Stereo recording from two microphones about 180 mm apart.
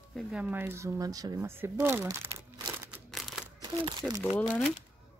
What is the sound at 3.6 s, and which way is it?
Crumpling, 20° right (ahead or behind).